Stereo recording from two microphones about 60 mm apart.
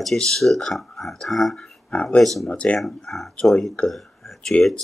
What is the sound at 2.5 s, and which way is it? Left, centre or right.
Speech, centre.